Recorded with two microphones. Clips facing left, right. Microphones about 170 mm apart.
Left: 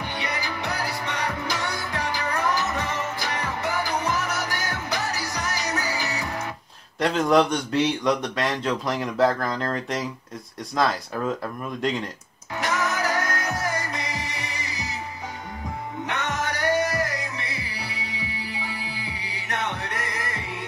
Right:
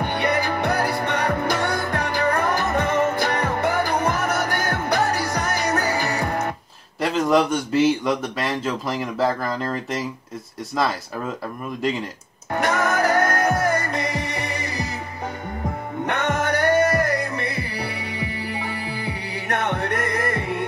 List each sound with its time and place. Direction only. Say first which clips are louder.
0.0 s music: right 8 dB; 55° right (ahead or behind)
7.0 s speech: right 1 dB; centre (ahead or behind)
11.8 s speech: right 2 dB; 5° right (ahead or behind)
12.5 s music: right 5 dB; 55° right (ahead or behind)
16.1 s music: right 7 dB; 55° right (ahead or behind)